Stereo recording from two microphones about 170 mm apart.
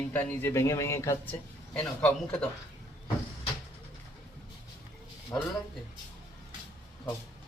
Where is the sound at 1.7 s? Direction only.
5° left (ahead or behind).